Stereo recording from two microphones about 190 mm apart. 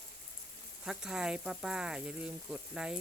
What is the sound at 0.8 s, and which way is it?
Speech, 5° right (ahead or behind).